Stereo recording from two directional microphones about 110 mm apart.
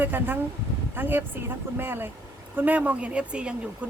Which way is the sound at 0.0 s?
15° right (ahead or behind).